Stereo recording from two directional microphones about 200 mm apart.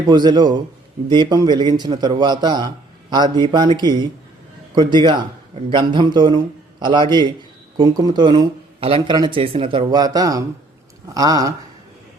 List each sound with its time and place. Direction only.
0.1 s a man's voice: 20° right (ahead or behind)